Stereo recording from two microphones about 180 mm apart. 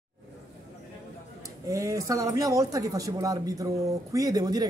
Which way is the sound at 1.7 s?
15° right (ahead or behind).